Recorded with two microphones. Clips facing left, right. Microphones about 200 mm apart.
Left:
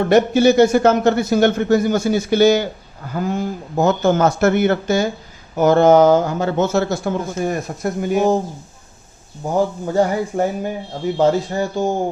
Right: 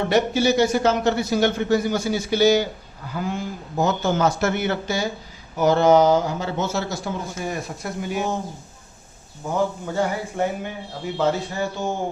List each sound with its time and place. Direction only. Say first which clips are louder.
0.1 s speech: left 7 dB; 50° left (ahead or behind)
9.4 s speech: left 5 dB; 35° left (ahead or behind)